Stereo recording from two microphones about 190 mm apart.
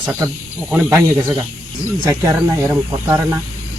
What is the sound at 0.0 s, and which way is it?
Speech, 20° right (ahead or behind).